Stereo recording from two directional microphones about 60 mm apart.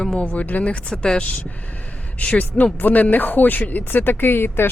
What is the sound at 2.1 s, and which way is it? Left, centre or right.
A woman's voice, left.